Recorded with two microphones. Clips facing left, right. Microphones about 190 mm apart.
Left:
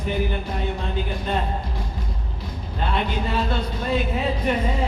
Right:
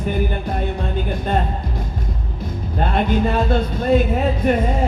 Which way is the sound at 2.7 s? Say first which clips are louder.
Right 6 dB; 50° right (ahead or behind).